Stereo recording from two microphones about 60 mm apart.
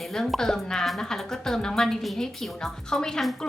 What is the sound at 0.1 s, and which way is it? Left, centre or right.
Speech, centre.